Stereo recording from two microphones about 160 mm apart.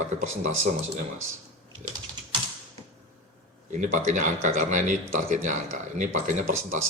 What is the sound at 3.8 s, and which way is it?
Speech, 50° right (ahead or behind).